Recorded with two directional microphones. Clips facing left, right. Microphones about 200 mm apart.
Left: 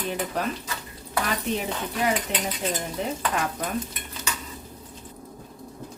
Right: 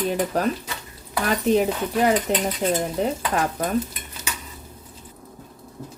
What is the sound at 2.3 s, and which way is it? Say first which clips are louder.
Speech: right 7 dB; 40° right (ahead or behind).